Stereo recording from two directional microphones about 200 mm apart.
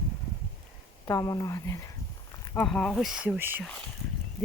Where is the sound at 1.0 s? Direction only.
15° left (ahead or behind); by 3.6 s 10° right (ahead or behind).